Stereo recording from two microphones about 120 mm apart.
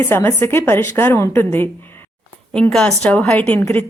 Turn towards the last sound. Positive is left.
turn(degrees=20)  # may be behind; listen again after turning